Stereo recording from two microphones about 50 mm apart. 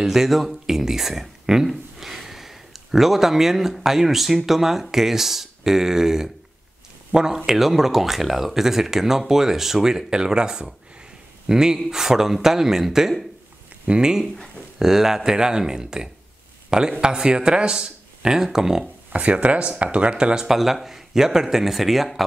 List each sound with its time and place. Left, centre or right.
0.0 s speech: centre
14.2 s speech: centre
19.1 s speech: right
20.4 s speech: centre